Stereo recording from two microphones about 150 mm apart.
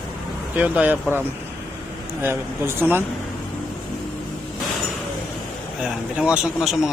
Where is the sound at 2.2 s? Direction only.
15° right (ahead or behind).